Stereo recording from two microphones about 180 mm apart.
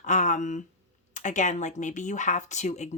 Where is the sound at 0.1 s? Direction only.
40° left (ahead or behind).